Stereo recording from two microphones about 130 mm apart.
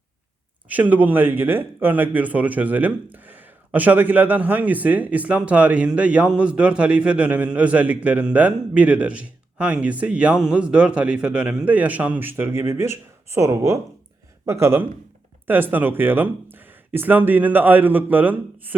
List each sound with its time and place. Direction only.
0.7 s speech: 10° right (ahead or behind)